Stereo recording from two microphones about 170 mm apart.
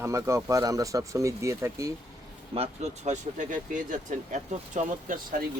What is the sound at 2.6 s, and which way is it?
Speech, 40° right (ahead or behind).